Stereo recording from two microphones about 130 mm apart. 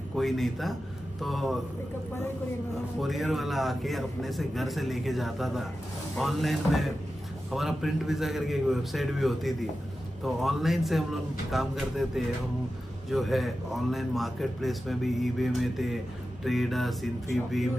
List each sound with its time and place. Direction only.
0.1 s a man's voice: centre (ahead or behind)
3.0 s a man's voice: centre (ahead or behind)
13.1 s a man's voice: centre (ahead or behind)